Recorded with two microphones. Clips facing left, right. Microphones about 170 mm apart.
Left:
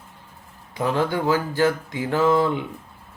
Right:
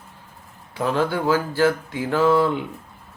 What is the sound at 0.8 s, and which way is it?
Speech, 15° left (ahead or behind).